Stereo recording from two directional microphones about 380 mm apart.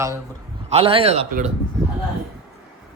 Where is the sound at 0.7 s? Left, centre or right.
Centre.